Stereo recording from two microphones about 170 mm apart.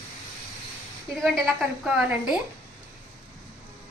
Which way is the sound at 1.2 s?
Centre (ahead or behind).